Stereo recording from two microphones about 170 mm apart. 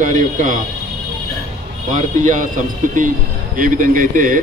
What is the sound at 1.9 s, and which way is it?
A man's voice, 45° right (ahead or behind).